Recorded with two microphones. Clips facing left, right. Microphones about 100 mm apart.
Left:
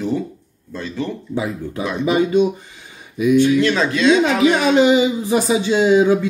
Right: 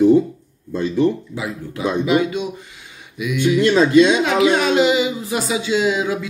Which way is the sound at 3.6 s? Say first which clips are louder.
Right 4 dB; 15° right (ahead or behind).